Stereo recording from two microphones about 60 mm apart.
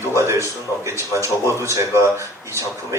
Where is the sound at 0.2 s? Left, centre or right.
Right.